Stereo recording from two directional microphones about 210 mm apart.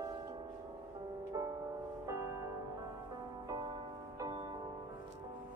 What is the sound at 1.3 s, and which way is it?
Music, 15° right (ahead or behind).